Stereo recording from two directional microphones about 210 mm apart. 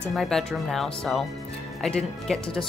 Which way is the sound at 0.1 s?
Centre (ahead or behind).